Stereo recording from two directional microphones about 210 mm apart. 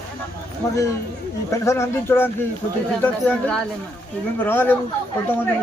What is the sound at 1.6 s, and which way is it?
A man's voice, 15° left (ahead or behind).